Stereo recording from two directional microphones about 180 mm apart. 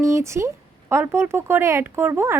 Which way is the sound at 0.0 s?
15° right (ahead or behind).